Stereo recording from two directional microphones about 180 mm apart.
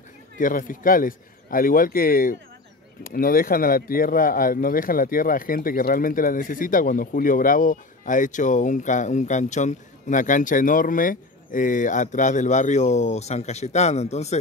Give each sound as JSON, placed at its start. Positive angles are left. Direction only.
{"t": 0.4, "sound": "speech", "side_deg": 50}